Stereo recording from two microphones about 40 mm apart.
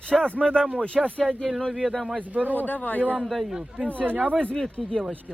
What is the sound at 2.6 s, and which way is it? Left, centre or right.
Speech, left.